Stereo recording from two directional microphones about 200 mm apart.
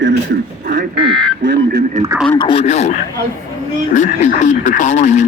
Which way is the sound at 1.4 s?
65° right (ahead or behind).